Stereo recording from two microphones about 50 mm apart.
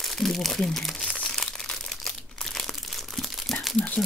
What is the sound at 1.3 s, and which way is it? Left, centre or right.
Crumpling, centre.